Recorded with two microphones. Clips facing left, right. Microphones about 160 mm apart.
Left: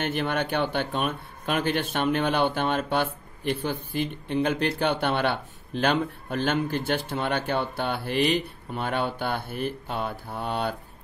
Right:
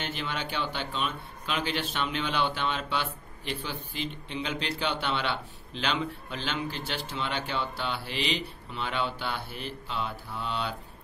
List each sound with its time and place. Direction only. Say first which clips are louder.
0.0 s speech: left 8 dB; 55° left (ahead or behind)